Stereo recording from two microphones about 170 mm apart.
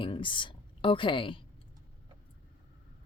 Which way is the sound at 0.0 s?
30° left (ahead or behind).